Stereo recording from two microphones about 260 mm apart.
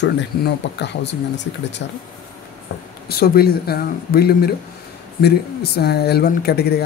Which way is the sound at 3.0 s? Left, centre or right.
Left.